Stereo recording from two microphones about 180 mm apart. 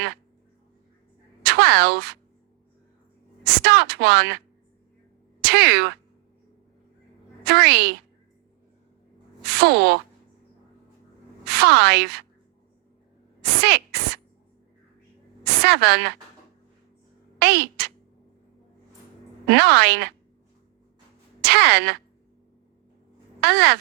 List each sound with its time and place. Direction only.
1.5 s speech: 65° right (ahead or behind)
3.4 s a woman's voice: 65° right (ahead or behind)
5.4 s speech: 65° right (ahead or behind)
7.4 s a woman's voice: 65° right (ahead or behind)
9.5 s a woman's voice: 65° right (ahead or behind)
11.4 s a woman's voice: 65° right (ahead or behind)
13.4 s a sound: 65° right (ahead or behind)
15.4 s a woman's voice: 65° right (ahead or behind)
17.4 s speech: 65° right (ahead or behind)
19.5 s a woman's voice: 65° right (ahead or behind)
21.4 s a woman's voice: 65° right (ahead or behind)
23.4 s speech: 65° right (ahead or behind)